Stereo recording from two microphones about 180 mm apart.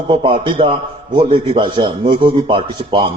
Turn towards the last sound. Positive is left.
turn(degrees=-30)  # may be behind; listen again after turning